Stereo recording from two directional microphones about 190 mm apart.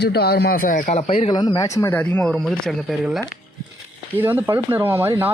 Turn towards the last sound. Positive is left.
turn(degrees=-10)  # may be behind; listen again after turning